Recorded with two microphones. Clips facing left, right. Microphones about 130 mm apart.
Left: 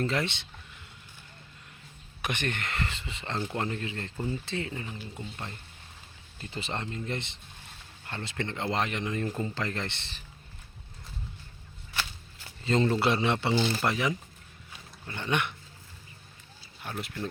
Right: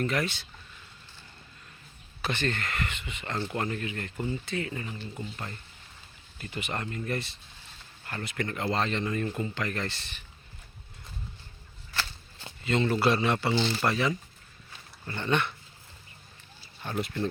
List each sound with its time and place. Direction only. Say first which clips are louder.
0.0 s speech: even; 25° left (ahead or behind)
2.2 s speech: right 2 dB; 15° left (ahead or behind)
6.4 s speech: right 1 dB; 30° left (ahead or behind)
12.6 s speech: left 1 dB; 35° left (ahead or behind)
13.0 s speech: right 1 dB; 20° left (ahead or behind)
14.7 s dog: right 2 dB; 10° left (ahead or behind)
16.8 s speech: right 5 dB; centre (ahead or behind)